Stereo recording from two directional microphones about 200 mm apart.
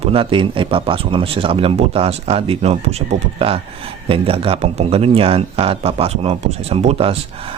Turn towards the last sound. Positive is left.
turn(degrees=-30)  # may be behind; listen again after turning